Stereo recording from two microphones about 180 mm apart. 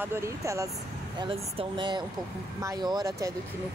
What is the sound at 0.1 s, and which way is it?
Speech, 15° right (ahead or behind).